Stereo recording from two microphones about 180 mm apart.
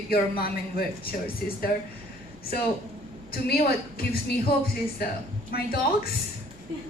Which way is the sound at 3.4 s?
60° left (ahead or behind).